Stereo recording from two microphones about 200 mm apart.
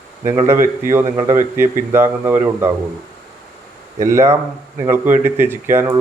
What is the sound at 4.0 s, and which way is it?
Speech, 15° right (ahead or behind).